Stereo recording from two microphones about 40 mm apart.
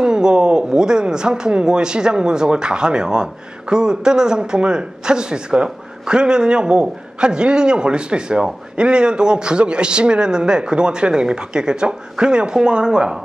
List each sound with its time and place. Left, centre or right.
0.0 s speech: right